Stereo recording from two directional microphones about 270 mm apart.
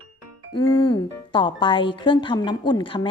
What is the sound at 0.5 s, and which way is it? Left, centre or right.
Speech, centre.